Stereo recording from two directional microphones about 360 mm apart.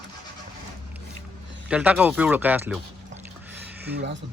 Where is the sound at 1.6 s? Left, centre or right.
Centre.